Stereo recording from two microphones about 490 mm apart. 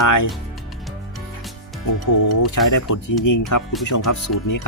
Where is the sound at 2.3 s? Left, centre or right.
Left.